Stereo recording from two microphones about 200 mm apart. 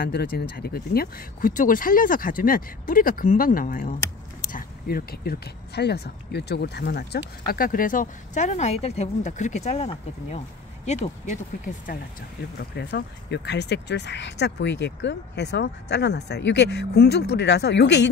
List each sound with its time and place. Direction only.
0.0 s speech: 50° left (ahead or behind)
12.5 s speech: 55° left (ahead or behind)